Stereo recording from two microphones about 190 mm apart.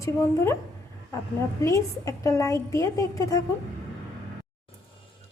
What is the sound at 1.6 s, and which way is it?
A woman's voice, 15° left (ahead or behind).